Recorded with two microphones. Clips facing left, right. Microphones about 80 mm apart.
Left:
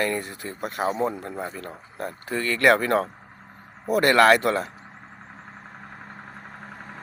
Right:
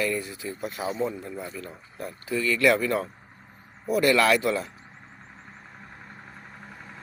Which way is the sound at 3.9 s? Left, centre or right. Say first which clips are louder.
Left 4 dB; left.